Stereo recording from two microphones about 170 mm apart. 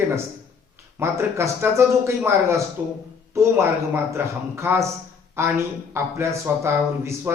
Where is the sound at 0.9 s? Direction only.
15° right (ahead or behind).